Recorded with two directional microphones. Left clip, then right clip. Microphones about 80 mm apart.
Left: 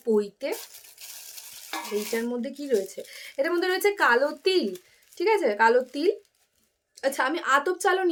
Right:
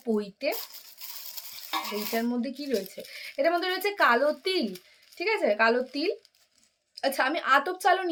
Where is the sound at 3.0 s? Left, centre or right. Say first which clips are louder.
Left 3 dB; centre.